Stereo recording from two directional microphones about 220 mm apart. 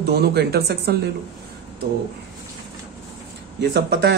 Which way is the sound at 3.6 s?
50° right (ahead or behind).